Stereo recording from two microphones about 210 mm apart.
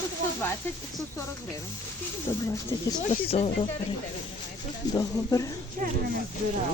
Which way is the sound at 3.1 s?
30° left (ahead or behind).